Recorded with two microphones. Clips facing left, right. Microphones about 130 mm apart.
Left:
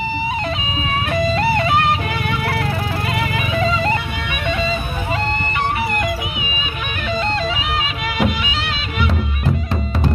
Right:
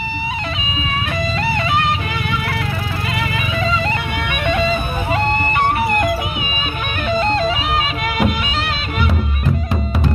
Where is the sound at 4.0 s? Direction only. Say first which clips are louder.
Right 3 dB; 60° right (ahead or behind); by 9.1 s 45° right (ahead or behind).